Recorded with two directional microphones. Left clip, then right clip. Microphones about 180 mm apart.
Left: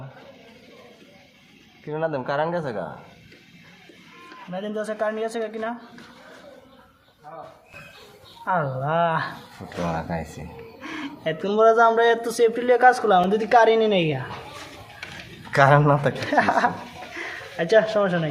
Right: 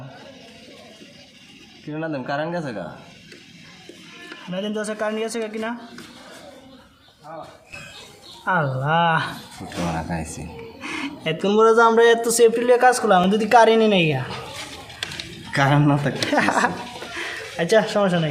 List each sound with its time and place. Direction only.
1.9 s speech: 40° left (ahead or behind)
4.5 s speech: 20° right (ahead or behind)
8.4 s speech: 20° right (ahead or behind)
10.1 s speech: 25° left (ahead or behind)
10.8 s speech: 25° right (ahead or behind)
15.5 s speech: 40° left (ahead or behind)
16.2 s speech: 20° right (ahead or behind)
17.2 s a sound: 20° right (ahead or behind)